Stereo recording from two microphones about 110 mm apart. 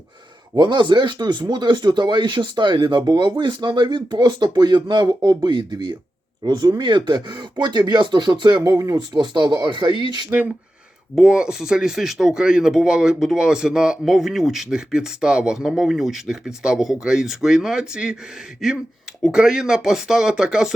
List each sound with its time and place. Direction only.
0.5 s speech: 45° right (ahead or behind)
8.7 s speech: 30° right (ahead or behind)
9.1 s speech: 40° right (ahead or behind)
10.2 s speech: 15° right (ahead or behind)
11.1 s speech: 5° right (ahead or behind)